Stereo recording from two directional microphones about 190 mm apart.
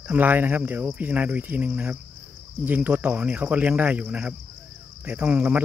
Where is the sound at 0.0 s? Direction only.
10° right (ahead or behind).